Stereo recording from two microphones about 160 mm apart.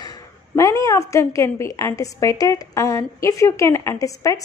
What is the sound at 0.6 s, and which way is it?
A woman's voice, 20° left (ahead or behind).